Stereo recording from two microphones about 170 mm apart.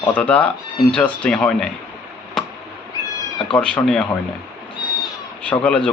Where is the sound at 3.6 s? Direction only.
5° left (ahead or behind).